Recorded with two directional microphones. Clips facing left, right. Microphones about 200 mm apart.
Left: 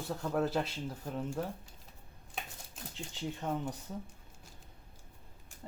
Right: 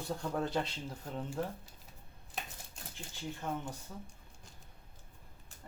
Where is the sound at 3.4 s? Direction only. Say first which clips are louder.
Left 2 dB; 20° left (ahead or behind).